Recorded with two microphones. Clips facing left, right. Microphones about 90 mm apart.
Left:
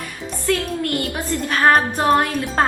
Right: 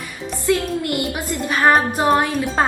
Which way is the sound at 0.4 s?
10° right (ahead or behind).